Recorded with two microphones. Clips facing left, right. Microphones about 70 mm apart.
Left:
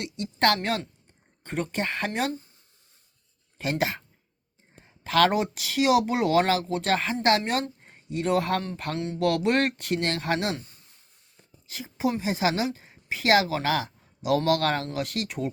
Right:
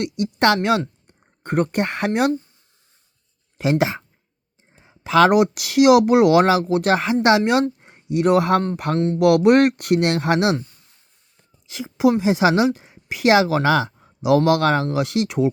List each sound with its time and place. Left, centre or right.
0.0 s a woman's voice: right
3.6 s speech: right
11.6 s a woman's voice: right